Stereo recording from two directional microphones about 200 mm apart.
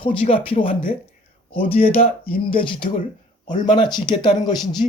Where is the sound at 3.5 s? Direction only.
40° left (ahead or behind).